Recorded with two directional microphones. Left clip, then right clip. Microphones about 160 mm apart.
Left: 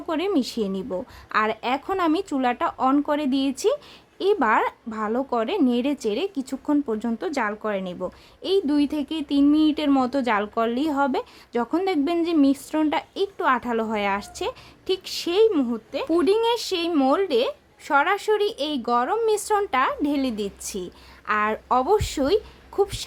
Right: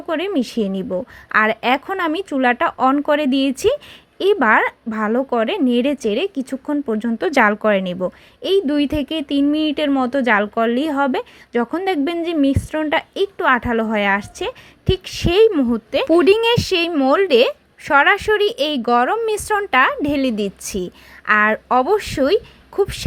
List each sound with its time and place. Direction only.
0.1 s a woman's voice: 10° right (ahead or behind)
7.3 s a woman's voice: 35° right (ahead or behind); by 23.0 s 15° right (ahead or behind)